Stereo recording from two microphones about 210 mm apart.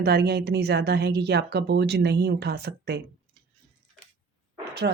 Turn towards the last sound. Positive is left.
turn(degrees=-55)  # may be behind; listen again after turning